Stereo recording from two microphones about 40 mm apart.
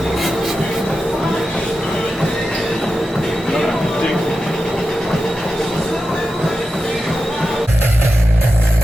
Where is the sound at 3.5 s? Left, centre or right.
Centre.